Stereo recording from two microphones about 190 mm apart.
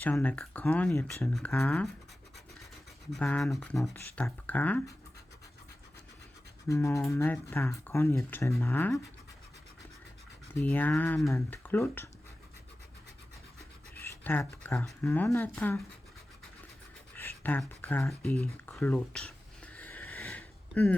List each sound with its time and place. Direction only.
0.0 s speech: 5° left (ahead or behind)
3.1 s speech: 5° left (ahead or behind)
6.7 s speech: 15° left (ahead or behind)
10.6 s speech: 10° left (ahead or behind)
14.0 s speech: 10° left (ahead or behind)
17.2 s a sound: 10° left (ahead or behind)